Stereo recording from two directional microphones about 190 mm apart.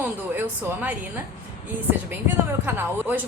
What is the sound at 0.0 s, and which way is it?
Speech, 10° right (ahead or behind).